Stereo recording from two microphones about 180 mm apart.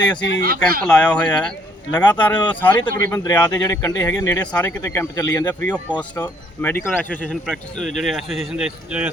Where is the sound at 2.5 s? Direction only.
10° left (ahead or behind).